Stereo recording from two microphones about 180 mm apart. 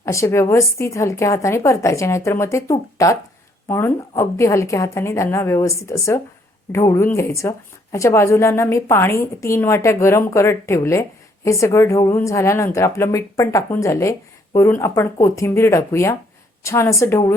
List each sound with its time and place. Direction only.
0.0 s a woman's voice: 15° left (ahead or behind)